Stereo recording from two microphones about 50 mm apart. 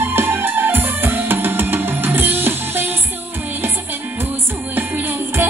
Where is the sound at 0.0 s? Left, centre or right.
Right.